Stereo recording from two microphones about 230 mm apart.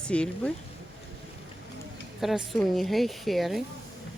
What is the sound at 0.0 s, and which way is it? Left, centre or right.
Speech, centre.